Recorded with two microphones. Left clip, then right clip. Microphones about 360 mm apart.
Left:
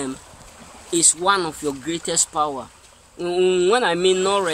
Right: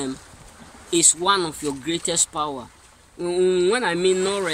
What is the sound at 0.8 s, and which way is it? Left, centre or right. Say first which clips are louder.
Speech: left 1 dB; centre.